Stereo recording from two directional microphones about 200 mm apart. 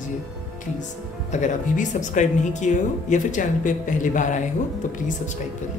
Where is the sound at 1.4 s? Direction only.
40° left (ahead or behind).